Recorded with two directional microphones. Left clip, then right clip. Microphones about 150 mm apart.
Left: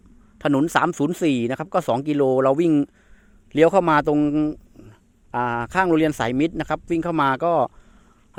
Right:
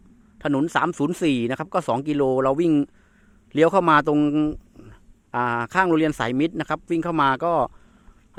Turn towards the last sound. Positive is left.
turn(degrees=15)  # may be behind; listen again after turning